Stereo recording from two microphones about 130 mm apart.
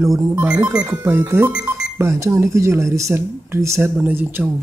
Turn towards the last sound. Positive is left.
turn(degrees=-15)  # may be behind; listen again after turning